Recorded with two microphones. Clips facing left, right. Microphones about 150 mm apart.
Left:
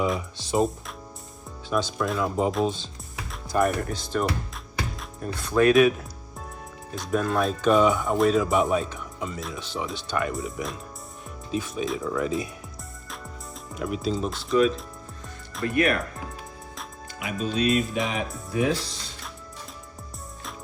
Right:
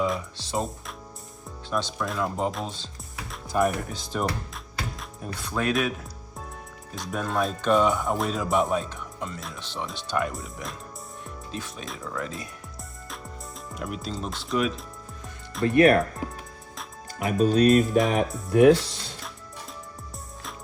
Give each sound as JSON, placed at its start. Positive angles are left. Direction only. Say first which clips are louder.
{"t": 0.3, "sound": "speech", "louder": "left 6 dB", "side_deg": 15}
{"t": 1.7, "sound": "speech", "louder": "left 3 dB", "side_deg": 5}
{"t": 2.6, "sound": "speech", "louder": "left 9 dB", "side_deg": 20}
{"t": 3.5, "sound": "speech", "louder": "left 1 dB", "side_deg": 0}
{"t": 6.9, "sound": "speech", "louder": "left 3 dB", "side_deg": 0}
{"t": 13.7, "sound": "speech", "louder": "left 6 dB", "side_deg": 0}
{"t": 15.6, "sound": "speech", "louder": "right 5 dB", "side_deg": -30}
{"t": 17.2, "sound": "speech", "louder": "right 6 dB", "side_deg": -40}
{"t": 18.5, "sound": "speech", "louder": "right 9 dB", "side_deg": -65}